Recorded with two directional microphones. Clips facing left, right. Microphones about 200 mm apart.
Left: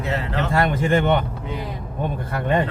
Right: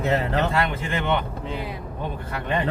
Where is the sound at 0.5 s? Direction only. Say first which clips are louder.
Left 6 dB; 45° left (ahead or behind).